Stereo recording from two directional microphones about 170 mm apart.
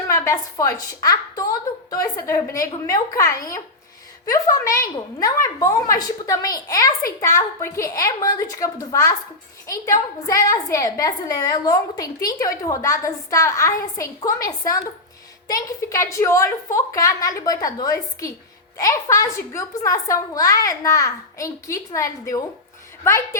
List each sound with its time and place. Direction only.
0.1 s a woman's voice: 20° left (ahead or behind)